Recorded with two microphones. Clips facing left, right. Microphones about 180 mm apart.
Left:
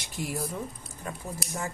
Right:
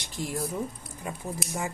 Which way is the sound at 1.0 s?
15° right (ahead or behind).